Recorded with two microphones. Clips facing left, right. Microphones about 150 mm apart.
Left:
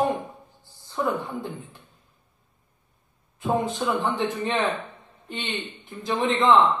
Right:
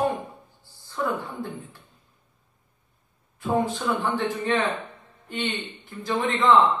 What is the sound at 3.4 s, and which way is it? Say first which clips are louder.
A man's voice: even; 20° left (ahead or behind).